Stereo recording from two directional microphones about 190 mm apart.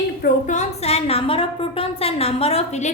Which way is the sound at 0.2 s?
40° left (ahead or behind).